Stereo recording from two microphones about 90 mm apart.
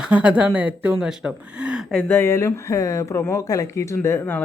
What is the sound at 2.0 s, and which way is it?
Speech, 30° left (ahead or behind).